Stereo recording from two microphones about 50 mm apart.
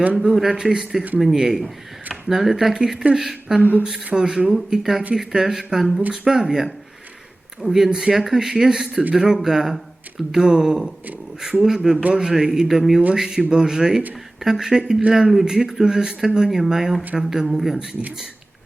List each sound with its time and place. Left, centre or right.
0.3 s speech: centre
2.7 s speech: centre
3.6 s speech: left
4.0 s speech: centre
4.8 s speech: centre